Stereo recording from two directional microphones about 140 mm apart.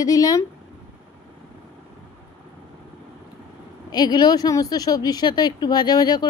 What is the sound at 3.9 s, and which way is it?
A woman's voice, 30° left (ahead or behind).